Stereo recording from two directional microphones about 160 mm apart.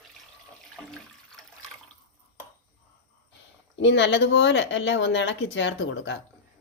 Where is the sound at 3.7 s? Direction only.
90° left.